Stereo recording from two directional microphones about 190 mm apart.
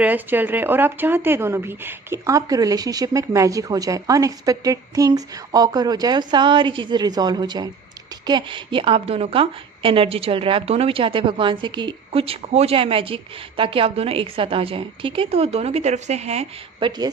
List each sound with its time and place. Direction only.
0.0 s a woman's voice: 10° right (ahead or behind); by 16.9 s 35° right (ahead or behind)